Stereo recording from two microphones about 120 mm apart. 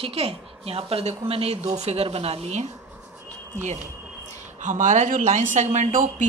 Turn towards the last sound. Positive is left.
turn(degrees=-80)